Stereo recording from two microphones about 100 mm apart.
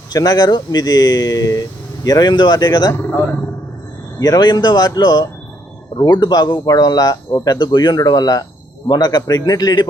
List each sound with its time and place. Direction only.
0.1 s a man's voice: 40° left (ahead or behind)
4.2 s a man's voice: 45° left (ahead or behind)